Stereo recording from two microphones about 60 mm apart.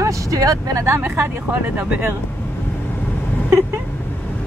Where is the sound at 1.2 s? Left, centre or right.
Right.